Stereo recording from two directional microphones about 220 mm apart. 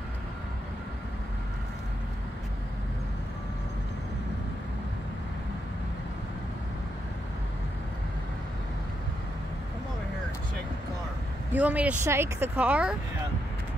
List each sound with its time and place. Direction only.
11.5 s speech: 5° right (ahead or behind)